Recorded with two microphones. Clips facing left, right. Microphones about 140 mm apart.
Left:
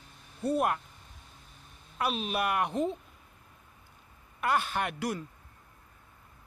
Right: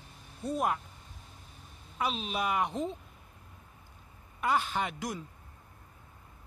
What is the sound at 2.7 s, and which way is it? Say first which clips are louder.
Speech: left 4 dB; 65° left (ahead or behind).